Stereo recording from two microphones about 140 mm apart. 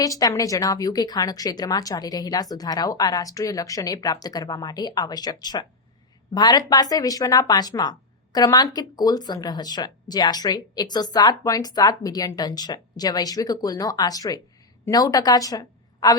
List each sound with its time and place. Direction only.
0.0 s a woman's voice: 25° left (ahead or behind)